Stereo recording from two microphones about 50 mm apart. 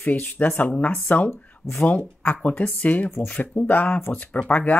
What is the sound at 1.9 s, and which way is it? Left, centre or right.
Speech, left.